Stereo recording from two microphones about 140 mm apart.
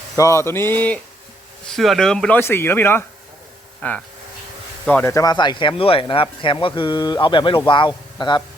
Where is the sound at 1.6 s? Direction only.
Centre (ahead or behind).